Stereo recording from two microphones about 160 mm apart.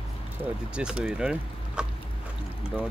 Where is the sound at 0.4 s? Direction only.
5° right (ahead or behind).